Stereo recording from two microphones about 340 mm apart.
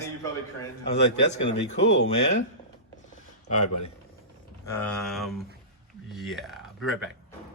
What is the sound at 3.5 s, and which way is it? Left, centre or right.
Speech, left.